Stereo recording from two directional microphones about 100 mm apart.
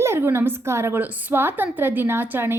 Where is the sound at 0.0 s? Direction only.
25° right (ahead or behind).